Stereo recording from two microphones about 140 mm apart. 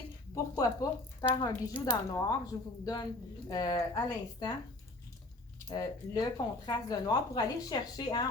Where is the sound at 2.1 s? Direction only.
25° left (ahead or behind).